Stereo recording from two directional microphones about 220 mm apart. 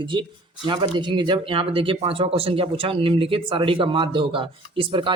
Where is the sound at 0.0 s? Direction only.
20° right (ahead or behind).